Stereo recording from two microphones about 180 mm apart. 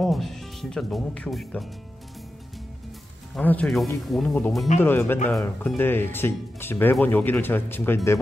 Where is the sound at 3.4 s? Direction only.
5° left (ahead or behind).